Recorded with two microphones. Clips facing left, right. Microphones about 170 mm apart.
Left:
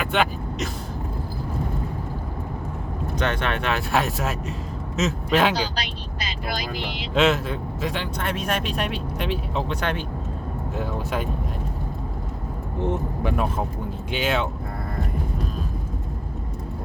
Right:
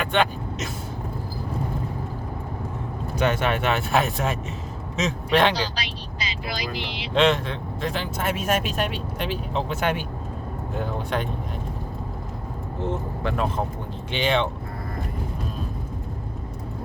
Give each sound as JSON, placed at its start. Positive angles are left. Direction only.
{"t": 0.0, "sound": "vehicle", "side_deg": 5}
{"t": 3.2, "sound": "speech", "side_deg": -5}
{"t": 5.7, "sound": "speech", "side_deg": 55}
{"t": 7.1, "sound": "speech", "side_deg": 5}
{"t": 10.8, "sound": "speech", "side_deg": 5}
{"t": 12.8, "sound": "speech", "side_deg": 15}